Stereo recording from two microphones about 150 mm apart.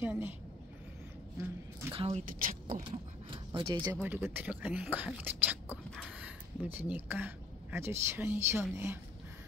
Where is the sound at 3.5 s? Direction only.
30° right (ahead or behind).